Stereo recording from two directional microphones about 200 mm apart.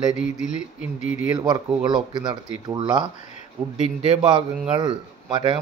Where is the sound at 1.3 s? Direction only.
20° right (ahead or behind).